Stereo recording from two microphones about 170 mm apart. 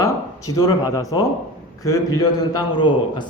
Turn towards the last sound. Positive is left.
turn(degrees=25)  # may be behind; listen again after turning